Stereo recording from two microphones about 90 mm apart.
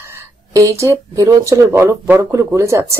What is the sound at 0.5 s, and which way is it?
A woman's voice, 35° right (ahead or behind).